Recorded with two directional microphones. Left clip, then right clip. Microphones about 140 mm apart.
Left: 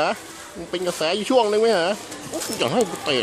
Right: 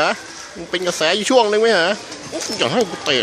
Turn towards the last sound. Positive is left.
turn(degrees=10)  # may be behind; listen again after turning